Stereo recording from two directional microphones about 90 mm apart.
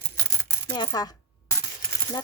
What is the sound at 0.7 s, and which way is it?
Speech, 50° left (ahead or behind).